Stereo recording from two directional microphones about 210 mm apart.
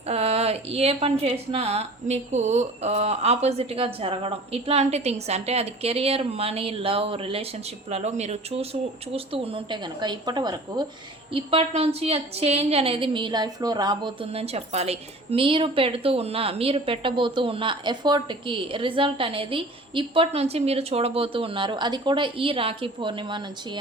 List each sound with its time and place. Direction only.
0.0 s a woman's voice: 30° right (ahead or behind)